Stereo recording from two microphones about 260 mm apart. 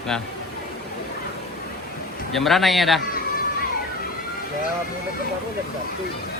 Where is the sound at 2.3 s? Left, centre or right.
Centre.